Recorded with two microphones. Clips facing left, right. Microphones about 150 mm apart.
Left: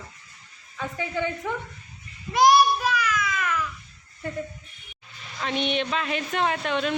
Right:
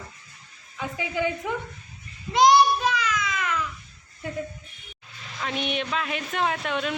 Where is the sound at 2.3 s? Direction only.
20° right (ahead or behind).